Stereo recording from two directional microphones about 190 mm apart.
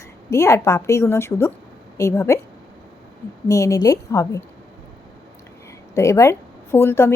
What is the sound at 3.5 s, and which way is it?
Speech, 15° left (ahead or behind).